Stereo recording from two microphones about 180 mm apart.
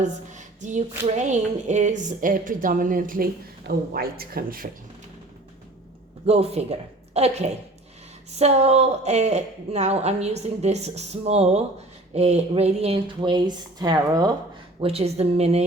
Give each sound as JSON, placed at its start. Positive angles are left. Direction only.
{"t": 0.0, "sound": "a sound", "side_deg": -40}
{"t": 3.7, "sound": "speech", "side_deg": -55}
{"t": 6.2, "sound": "a woman's voice", "side_deg": -35}
{"t": 14.8, "sound": "a woman's voice", "side_deg": -35}